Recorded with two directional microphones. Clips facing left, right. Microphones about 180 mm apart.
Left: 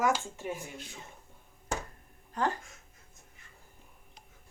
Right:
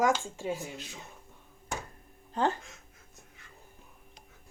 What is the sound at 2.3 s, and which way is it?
Speech, 25° right (ahead or behind).